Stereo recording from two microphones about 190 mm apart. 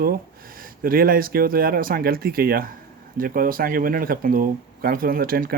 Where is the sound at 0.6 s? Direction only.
50° right (ahead or behind).